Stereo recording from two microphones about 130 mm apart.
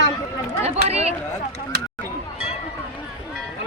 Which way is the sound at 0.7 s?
55° right (ahead or behind).